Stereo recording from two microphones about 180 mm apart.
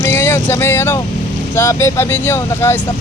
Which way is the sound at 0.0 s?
15° left (ahead or behind).